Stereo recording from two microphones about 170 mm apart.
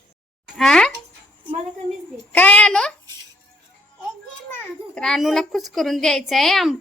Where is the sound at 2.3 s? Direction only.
10° left (ahead or behind).